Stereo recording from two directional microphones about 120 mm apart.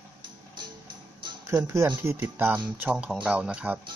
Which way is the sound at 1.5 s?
25° right (ahead or behind).